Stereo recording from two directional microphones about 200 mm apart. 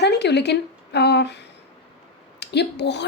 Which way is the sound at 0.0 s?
55° left (ahead or behind).